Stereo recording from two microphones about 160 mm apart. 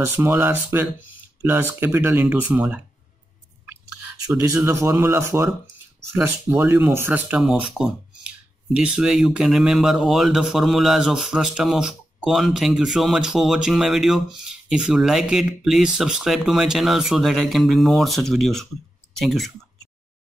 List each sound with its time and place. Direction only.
0.0 s speech: 15° right (ahead or behind)
4.3 s speech: 20° right (ahead or behind); by 19.5 s centre (ahead or behind)